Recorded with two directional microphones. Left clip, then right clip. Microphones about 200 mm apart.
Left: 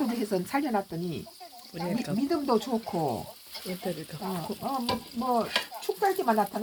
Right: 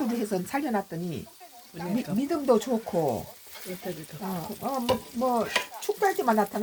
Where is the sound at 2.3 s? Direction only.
35° right (ahead or behind).